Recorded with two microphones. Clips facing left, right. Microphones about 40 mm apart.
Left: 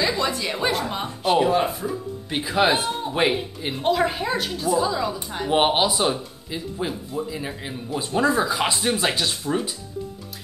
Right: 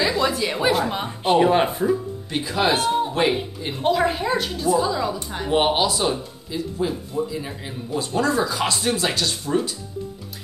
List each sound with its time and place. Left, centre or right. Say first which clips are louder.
0.2 s a woman's voice: right 3 dB; centre
1.0 s speech: right 1 dB; centre
2.2 s speech: left 2 dB; centre
2.9 s a woman's voice: right 2 dB; centre
5.5 s speech: even; centre